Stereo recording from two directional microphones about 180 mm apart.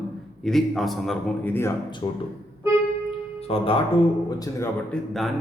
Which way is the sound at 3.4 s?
30° left (ahead or behind).